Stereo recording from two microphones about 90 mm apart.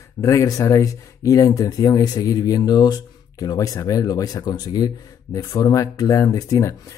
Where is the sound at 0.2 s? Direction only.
35° left (ahead or behind).